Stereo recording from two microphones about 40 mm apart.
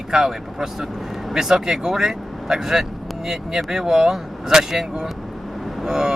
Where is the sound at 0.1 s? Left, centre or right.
Centre.